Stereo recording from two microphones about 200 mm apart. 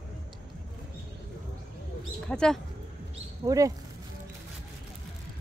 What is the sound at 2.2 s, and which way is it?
Speech, 5° left (ahead or behind).